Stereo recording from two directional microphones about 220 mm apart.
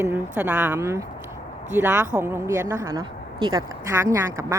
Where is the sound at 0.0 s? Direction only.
10° right (ahead or behind).